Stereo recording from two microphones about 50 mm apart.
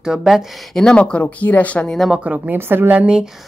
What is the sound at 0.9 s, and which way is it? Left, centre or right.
Speech, left.